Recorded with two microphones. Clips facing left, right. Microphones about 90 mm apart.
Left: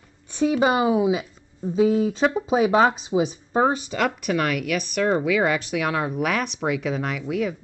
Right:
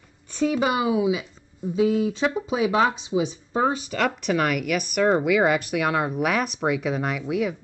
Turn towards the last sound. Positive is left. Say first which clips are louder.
# even
turn(degrees=-10)  # may be behind; listen again after turning